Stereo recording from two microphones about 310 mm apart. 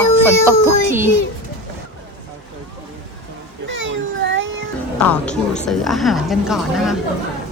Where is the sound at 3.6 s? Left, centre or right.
Right.